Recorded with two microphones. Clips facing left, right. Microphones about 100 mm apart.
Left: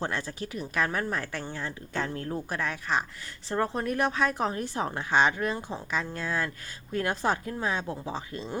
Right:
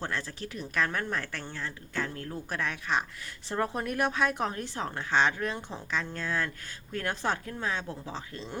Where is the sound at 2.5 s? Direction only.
Centre (ahead or behind).